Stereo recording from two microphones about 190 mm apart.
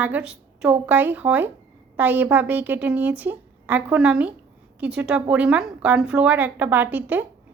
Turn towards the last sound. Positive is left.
turn(degrees=-10)  # may be behind; listen again after turning